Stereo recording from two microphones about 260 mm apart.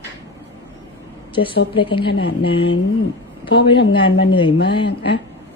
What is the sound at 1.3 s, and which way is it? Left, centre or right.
Speech, centre.